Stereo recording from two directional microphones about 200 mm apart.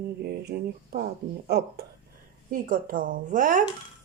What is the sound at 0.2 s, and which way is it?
A woman's voice, 55° right (ahead or behind).